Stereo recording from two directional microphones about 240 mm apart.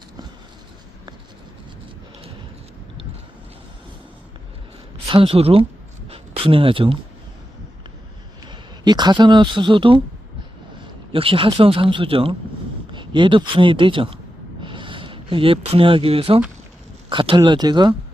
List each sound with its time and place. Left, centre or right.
5.0 s speech: right
6.1 s a sound: right
8.4 s speech: centre
11.1 s speech: right